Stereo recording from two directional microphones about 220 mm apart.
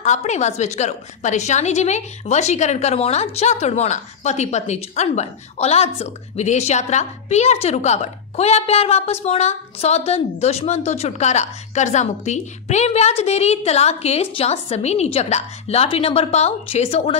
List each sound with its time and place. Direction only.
0.0 s a woman's voice: 30° left (ahead or behind)